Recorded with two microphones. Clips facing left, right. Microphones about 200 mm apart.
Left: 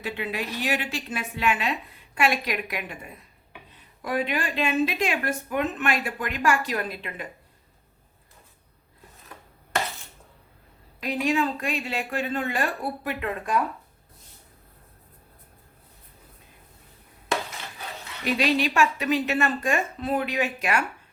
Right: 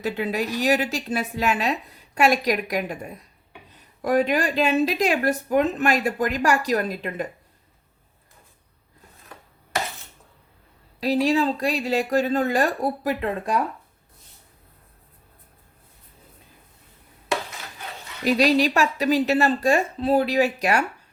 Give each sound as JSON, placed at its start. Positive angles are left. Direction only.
{"t": 0.0, "sound": "a woman's voice", "side_deg": -40}
{"t": 11.0, "sound": "a woman's voice", "side_deg": -35}
{"t": 18.3, "sound": "a woman's voice", "side_deg": -40}